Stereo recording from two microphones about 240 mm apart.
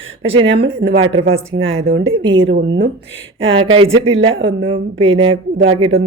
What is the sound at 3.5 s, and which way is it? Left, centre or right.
Speech, right.